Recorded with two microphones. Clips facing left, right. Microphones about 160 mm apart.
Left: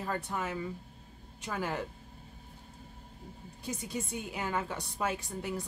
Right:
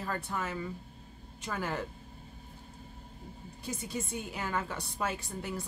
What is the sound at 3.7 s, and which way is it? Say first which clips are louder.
Speech: even; 15° left (ahead or behind).